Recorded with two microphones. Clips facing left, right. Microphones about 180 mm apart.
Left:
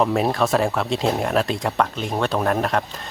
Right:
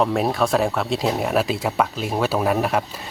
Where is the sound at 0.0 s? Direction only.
Centre (ahead or behind).